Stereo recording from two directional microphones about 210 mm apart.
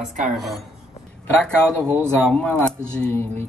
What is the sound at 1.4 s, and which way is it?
Speech, 5° left (ahead or behind).